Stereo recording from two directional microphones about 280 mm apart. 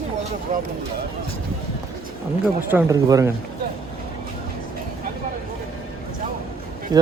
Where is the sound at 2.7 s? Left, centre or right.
Centre.